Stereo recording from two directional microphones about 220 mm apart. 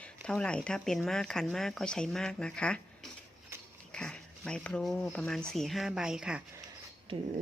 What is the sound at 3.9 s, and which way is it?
Speech, 5° left (ahead or behind).